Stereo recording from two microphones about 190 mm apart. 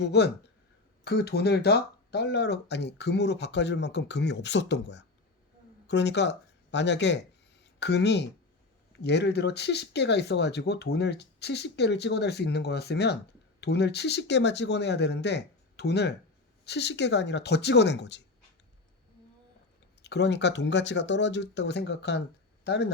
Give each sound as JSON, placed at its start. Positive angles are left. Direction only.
{"t": 0.0, "sound": "speech", "side_deg": 60}
{"t": 20.0, "sound": "speech", "side_deg": 65}